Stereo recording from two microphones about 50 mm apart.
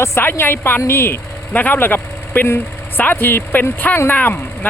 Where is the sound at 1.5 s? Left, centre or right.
Left.